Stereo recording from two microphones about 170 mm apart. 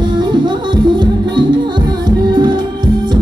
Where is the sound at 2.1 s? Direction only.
25° right (ahead or behind).